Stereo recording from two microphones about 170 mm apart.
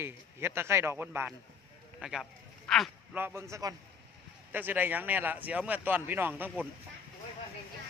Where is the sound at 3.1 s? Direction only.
15° right (ahead or behind).